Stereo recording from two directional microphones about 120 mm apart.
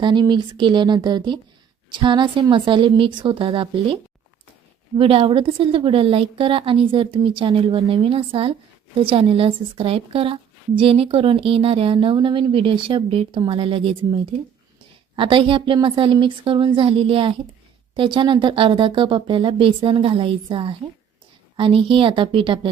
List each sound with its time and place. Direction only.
0.0 s a woman's voice: 40° right (ahead or behind)
4.9 s a woman's voice: 50° right (ahead or behind)